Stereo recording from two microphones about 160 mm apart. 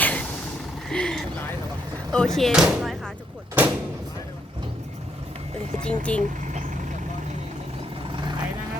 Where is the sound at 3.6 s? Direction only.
10° right (ahead or behind).